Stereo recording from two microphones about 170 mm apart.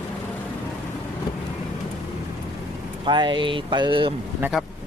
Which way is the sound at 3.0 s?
25° right (ahead or behind).